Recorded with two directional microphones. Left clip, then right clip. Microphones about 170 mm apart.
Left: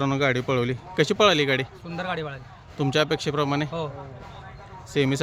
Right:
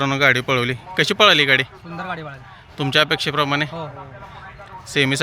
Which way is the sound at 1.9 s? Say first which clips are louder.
Right 1 dB; 45° left (ahead or behind).